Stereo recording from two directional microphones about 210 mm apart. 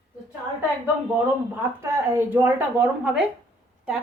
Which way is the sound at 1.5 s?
10° right (ahead or behind).